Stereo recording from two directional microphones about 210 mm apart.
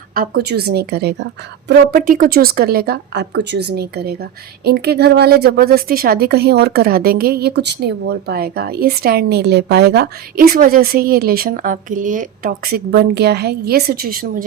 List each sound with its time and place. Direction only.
0.1 s a woman's voice: 45° right (ahead or behind)